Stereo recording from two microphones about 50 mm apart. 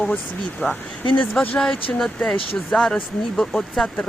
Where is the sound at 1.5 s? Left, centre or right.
Centre.